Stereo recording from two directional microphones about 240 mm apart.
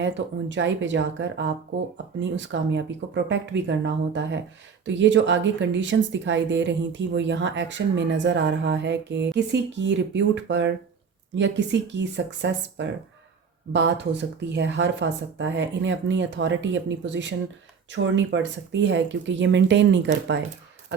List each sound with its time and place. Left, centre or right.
0.0 s speech: right